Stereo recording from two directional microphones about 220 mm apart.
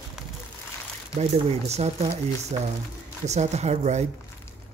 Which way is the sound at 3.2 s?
30° right (ahead or behind).